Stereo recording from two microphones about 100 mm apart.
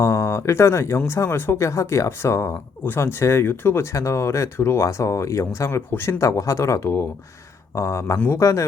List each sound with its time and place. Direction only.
0.0 s speech: 30° left (ahead or behind)